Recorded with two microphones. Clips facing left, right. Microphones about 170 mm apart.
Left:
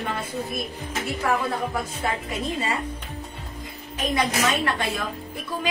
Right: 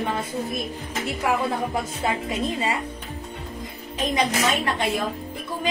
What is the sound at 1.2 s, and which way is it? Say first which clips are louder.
Speech: right 1 dB; 15° right (ahead or behind).